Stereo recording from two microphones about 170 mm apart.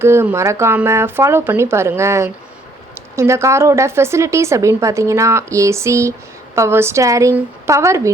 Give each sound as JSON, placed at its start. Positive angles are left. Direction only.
{"t": 0.0, "sound": "a woman's voice", "side_deg": -15}